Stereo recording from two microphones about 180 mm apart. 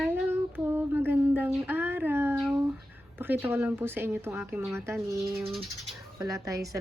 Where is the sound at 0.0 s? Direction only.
10° right (ahead or behind).